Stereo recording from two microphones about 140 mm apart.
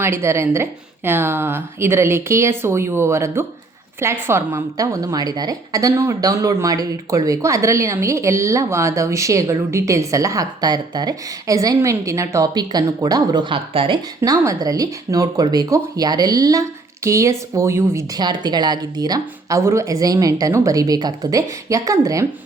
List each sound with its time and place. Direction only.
0.0 s a woman's voice: 20° right (ahead or behind); by 14.0 s 40° right (ahead or behind)
14.2 s speech: 25° right (ahead or behind)